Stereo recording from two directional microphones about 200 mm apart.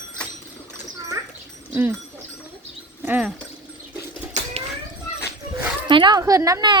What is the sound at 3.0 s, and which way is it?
Speech, 5° right (ahead or behind).